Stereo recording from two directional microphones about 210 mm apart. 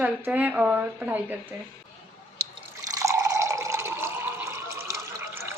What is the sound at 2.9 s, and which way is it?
Water, 15° right (ahead or behind).